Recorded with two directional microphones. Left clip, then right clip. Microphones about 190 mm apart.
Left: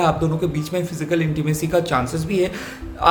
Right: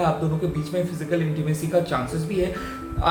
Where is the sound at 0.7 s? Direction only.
40° left (ahead or behind).